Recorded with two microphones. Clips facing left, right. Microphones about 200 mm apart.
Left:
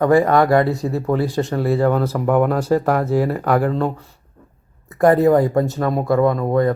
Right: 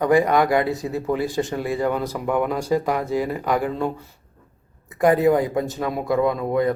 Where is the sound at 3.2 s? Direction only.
40° left (ahead or behind).